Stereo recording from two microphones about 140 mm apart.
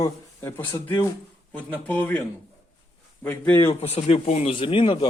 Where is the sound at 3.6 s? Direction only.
45° left (ahead or behind).